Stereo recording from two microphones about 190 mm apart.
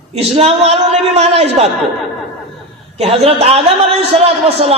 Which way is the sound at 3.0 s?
30° right (ahead or behind).